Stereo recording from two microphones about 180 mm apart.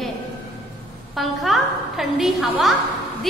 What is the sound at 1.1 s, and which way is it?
A woman's voice, centre (ahead or behind).